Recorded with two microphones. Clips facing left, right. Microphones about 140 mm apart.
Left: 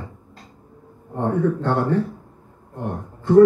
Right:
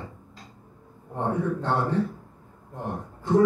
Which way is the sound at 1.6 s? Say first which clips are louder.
Left 5 dB; 55° left (ahead or behind).